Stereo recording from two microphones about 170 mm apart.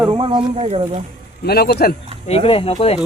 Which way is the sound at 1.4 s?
65° left (ahead or behind).